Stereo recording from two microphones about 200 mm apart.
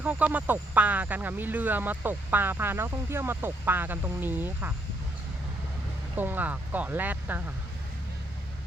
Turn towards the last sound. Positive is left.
turn(degrees=-10)  # may be behind; listen again after turning